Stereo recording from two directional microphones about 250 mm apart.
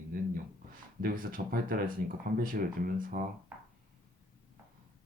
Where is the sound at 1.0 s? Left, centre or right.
Right.